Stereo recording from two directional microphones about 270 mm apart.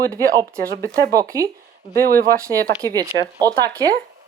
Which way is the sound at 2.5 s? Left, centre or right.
Centre.